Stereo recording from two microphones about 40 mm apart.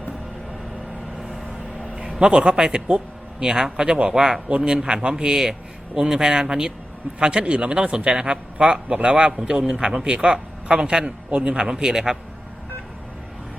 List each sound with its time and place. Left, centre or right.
2.0 s a sound: centre
2.3 s a man's voice: right
3.8 s speech: right
4.1 s a man's voice: centre